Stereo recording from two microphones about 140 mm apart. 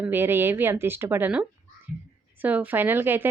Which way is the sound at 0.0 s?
15° right (ahead or behind).